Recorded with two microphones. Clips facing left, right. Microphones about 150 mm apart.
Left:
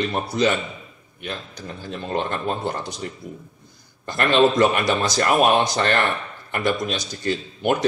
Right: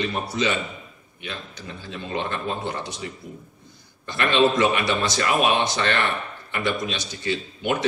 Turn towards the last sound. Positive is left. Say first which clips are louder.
# left 3 dB
turn(degrees=45)  # may be behind; listen again after turning